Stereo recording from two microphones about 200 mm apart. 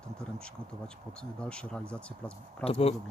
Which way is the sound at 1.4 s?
5° left (ahead or behind).